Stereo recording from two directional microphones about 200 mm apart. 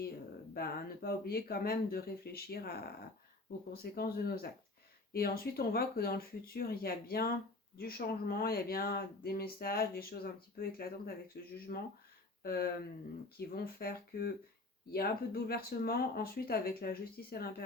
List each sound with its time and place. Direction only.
0.5 s speech: 50° left (ahead or behind)